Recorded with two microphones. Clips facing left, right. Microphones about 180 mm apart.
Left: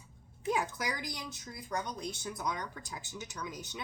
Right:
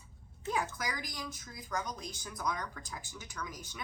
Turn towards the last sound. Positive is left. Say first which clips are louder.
# left 2 dB
turn(degrees=20)  # may be behind; listen again after turning